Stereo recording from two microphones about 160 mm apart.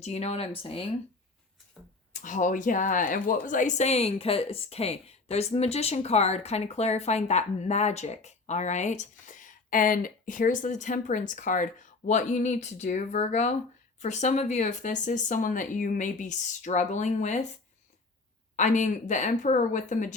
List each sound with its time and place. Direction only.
0.0 s speech: 45° left (ahead or behind)
2.2 s speech: 55° left (ahead or behind)
18.5 s speech: 50° left (ahead or behind)